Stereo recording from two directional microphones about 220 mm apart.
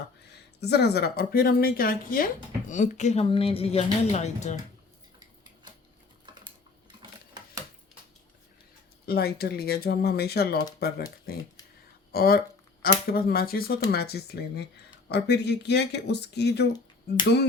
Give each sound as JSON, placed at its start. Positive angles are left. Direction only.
{"t": 0.6, "sound": "speech", "side_deg": 50}
{"t": 7.0, "sound": "a sound", "side_deg": -20}
{"t": 9.0, "sound": "speech", "side_deg": 45}